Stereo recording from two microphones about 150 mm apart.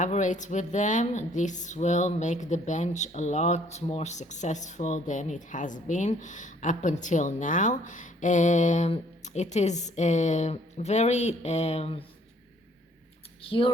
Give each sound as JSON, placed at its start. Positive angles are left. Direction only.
{"t": 0.0, "sound": "speech", "side_deg": 55}
{"t": 13.4, "sound": "speech", "side_deg": 35}